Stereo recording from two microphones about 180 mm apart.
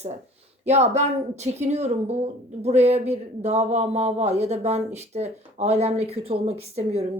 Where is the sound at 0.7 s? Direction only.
40° right (ahead or behind).